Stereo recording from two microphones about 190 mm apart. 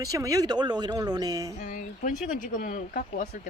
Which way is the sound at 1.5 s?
45° left (ahead or behind).